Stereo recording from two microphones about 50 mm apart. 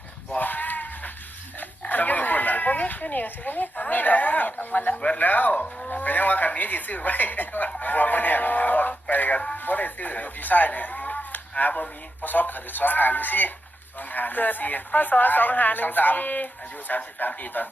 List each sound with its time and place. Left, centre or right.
0.3 s sheep: left
1.9 s speech: left
4.9 s speech: left
5.2 s speech: left